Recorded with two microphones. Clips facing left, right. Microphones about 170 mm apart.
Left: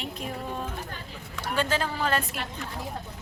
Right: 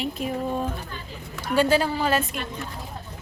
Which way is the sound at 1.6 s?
10° right (ahead or behind).